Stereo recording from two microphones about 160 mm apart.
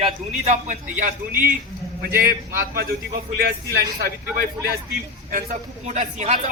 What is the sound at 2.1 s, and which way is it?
Speech, 65° right (ahead or behind).